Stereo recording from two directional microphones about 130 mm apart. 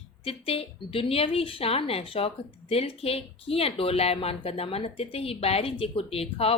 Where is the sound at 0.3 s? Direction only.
50° left (ahead or behind).